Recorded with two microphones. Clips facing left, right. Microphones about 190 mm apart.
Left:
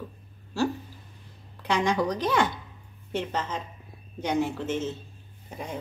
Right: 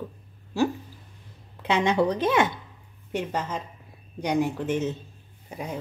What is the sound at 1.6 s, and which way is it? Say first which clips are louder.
Speech: right 3 dB; 25° right (ahead or behind).